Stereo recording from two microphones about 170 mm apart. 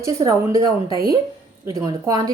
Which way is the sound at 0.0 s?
20° right (ahead or behind).